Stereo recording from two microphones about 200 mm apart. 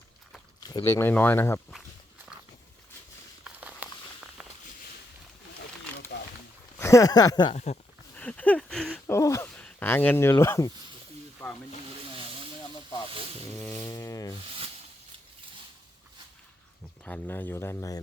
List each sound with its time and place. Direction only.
0.7 s speech: 15° left (ahead or behind)
3.4 s a sound: 5° right (ahead or behind)
6.7 s speech: 15° left (ahead or behind)
7.5 s speech: 35° left (ahead or behind)
8.1 s speech: 5° left (ahead or behind)
11.4 s snake: 10° left (ahead or behind)
13.6 s speech: 10° left (ahead or behind)
17.1 s speech: 10° left (ahead or behind)